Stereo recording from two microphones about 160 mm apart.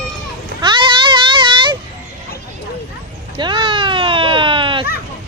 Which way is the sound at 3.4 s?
30° right (ahead or behind).